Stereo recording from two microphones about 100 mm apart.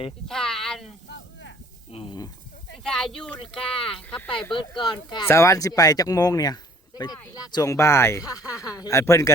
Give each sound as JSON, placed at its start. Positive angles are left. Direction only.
{"t": 0.3, "sound": "speech", "side_deg": 5}
{"t": 1.9, "sound": "speech", "side_deg": 70}
{"t": 2.7, "sound": "speech", "side_deg": 5}
{"t": 4.9, "sound": "speech", "side_deg": 50}
{"t": 5.2, "sound": "speech", "side_deg": 30}